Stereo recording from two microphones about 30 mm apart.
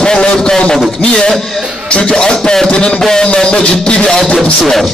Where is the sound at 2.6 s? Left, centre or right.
Left.